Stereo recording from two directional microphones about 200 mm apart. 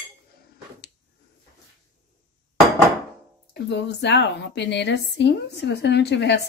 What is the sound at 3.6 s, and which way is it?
Speech, 60° left (ahead or behind).